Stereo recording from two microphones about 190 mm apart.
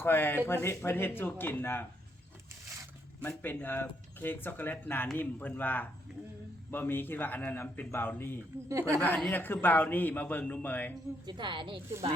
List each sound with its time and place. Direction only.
0.0 s speech: 10° left (ahead or behind)
3.2 s speech: 10° left (ahead or behind)
8.7 s speech: 15° right (ahead or behind)
9.0 s speech: 10° left (ahead or behind)
11.3 s a woman's voice: 25° right (ahead or behind)